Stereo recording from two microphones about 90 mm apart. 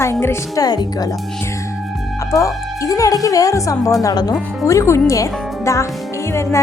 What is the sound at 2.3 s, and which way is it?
A woman's voice, 40° left (ahead or behind).